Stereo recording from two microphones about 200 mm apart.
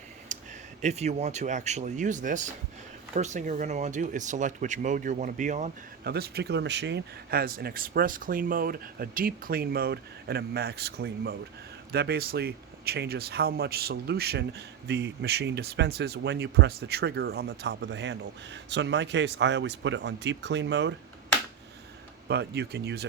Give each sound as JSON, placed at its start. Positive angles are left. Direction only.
{"t": 0.3, "sound": "a sound", "side_deg": -40}
{"t": 0.8, "sound": "speech", "side_deg": -35}
{"t": 6.1, "sound": "speech", "side_deg": -50}
{"t": 22.3, "sound": "speech", "side_deg": -55}